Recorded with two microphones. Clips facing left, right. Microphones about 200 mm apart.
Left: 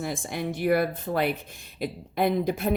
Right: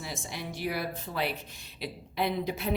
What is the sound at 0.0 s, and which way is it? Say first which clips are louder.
Speech: left 8 dB; 50° left (ahead or behind).